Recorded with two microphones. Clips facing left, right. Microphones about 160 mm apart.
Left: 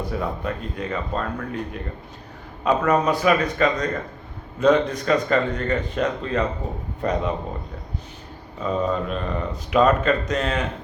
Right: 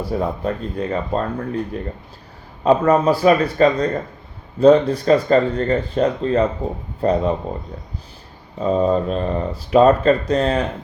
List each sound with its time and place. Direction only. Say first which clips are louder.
0.2 s speech: right 5 dB; 35° right (ahead or behind)
8.5 s speech: right 6 dB; 35° right (ahead or behind)